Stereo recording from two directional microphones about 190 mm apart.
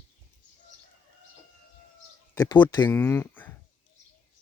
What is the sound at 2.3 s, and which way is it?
Speech, 20° left (ahead or behind).